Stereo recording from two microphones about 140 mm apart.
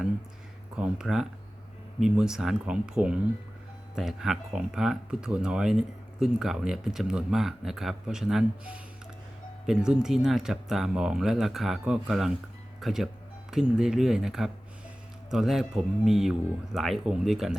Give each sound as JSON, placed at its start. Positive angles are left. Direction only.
{"t": 0.8, "sound": "speech", "side_deg": -5}